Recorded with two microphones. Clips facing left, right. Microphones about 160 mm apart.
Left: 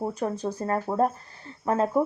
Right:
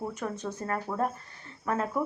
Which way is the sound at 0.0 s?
35° left (ahead or behind).